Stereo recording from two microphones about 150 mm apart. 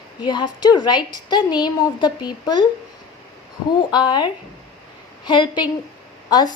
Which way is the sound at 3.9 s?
30° left (ahead or behind).